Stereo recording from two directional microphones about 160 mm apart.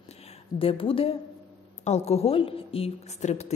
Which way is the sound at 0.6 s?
35° left (ahead or behind).